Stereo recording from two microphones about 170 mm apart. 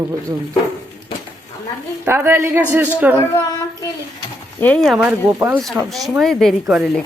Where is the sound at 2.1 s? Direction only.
15° right (ahead or behind).